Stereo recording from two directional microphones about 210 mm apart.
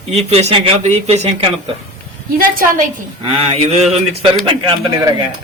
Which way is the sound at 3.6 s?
30° right (ahead or behind).